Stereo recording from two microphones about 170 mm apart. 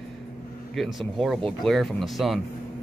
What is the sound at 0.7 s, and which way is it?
Speech, centre (ahead or behind).